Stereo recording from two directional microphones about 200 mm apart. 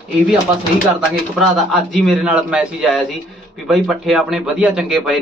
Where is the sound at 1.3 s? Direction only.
Centre (ahead or behind).